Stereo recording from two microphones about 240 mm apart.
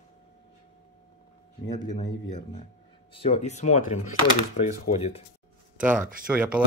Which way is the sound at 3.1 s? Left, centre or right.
Left.